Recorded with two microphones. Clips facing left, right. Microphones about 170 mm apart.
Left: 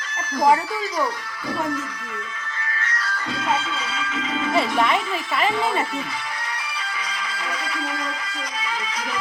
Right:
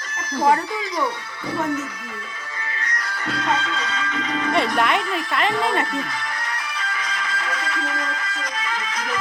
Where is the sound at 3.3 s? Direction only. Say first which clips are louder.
Right 1 dB; 5° left (ahead or behind).